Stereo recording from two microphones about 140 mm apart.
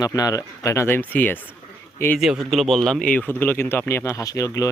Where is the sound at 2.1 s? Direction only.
5° right (ahead or behind); by 4.7 s 25° left (ahead or behind).